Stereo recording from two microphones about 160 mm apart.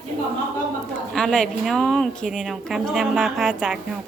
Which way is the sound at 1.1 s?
5° left (ahead or behind).